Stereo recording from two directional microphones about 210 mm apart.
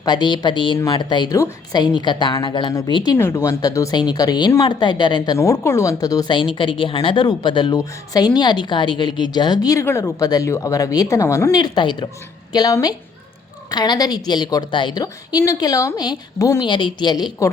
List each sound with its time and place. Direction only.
0.0 s a woman's voice: 20° left (ahead or behind)